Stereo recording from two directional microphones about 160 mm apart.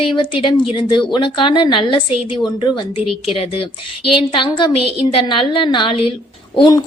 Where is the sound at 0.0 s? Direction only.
30° left (ahead or behind).